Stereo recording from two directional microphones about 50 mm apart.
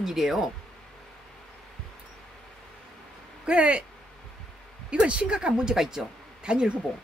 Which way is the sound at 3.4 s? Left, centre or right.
Right.